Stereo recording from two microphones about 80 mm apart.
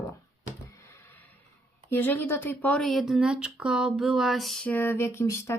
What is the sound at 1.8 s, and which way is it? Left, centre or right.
Speech, left.